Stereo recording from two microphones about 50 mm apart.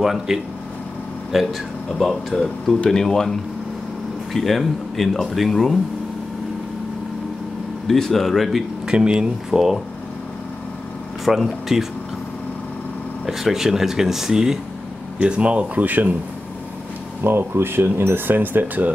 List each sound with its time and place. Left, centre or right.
0.0 s speech: centre
2.0 s speech: centre
7.8 s speech: centre
8.8 s speech: centre
11.2 s speech: centre
13.3 s speech: centre
15.1 s speech: right
17.2 s speech: right